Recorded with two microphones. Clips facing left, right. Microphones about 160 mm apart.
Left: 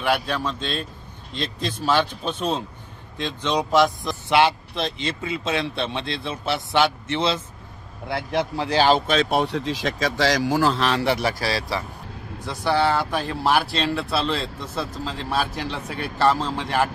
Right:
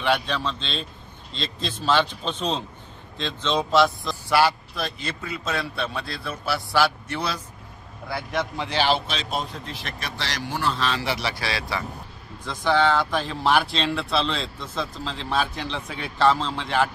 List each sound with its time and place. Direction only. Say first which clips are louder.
0.0 s a man's voice: left 1 dB; 10° left (ahead or behind); by 10.7 s 90° left
10.8 s speech: left 5 dB; 65° left (ahead or behind); by 11.8 s 35° left (ahead or behind)
12.4 s a man's voice: even; 10° left (ahead or behind)